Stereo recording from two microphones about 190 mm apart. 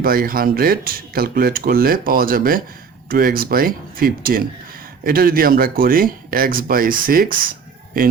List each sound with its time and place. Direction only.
0.0 s speech: 50° right (ahead or behind)